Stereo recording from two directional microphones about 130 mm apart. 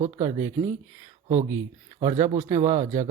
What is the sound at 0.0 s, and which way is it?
Speech, 60° right (ahead or behind).